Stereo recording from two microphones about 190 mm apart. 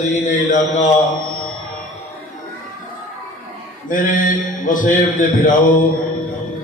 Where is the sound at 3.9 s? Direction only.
45° left (ahead or behind).